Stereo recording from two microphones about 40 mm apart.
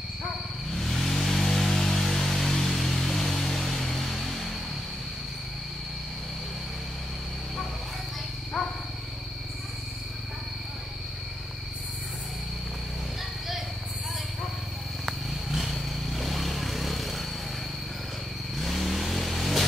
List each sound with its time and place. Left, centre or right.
0.7 s a sound: centre
8.6 s wild animals: centre
15.5 s vehicle: centre
18.6 s vehicle: centre